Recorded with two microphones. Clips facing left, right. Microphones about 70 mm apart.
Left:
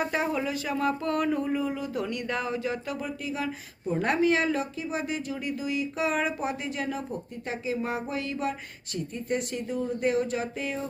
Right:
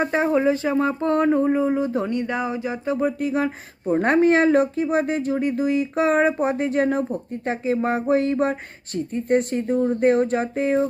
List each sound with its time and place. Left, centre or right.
0.0 s speech: right
3.0 s speech: right